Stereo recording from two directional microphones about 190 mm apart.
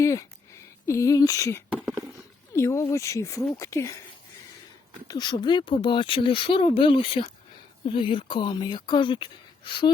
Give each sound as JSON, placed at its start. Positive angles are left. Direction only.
{"t": 0.0, "sound": "speech", "side_deg": 15}
{"t": 5.0, "sound": "speech", "side_deg": 20}